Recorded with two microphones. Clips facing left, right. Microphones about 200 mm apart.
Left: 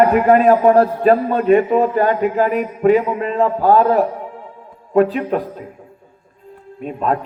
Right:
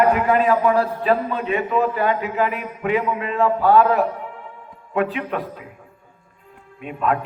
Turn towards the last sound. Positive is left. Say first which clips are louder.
# left 2 dB
turn(degrees=35)  # may be behind; listen again after turning